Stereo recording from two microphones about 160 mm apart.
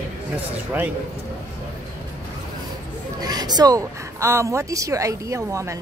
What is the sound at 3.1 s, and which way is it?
Speech, 25° right (ahead or behind).